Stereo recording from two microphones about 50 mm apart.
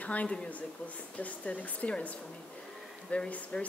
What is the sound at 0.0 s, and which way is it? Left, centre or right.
Speech, left.